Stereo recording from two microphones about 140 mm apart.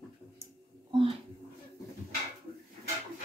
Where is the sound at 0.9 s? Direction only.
40° right (ahead or behind).